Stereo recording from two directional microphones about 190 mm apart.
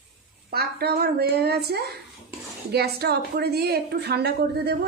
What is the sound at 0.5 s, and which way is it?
A woman's voice, 55° right (ahead or behind).